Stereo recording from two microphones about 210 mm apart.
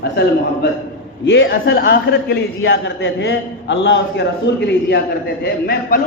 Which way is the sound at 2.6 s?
60° left (ahead or behind).